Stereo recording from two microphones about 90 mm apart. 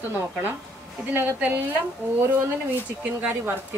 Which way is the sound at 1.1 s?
25° right (ahead or behind).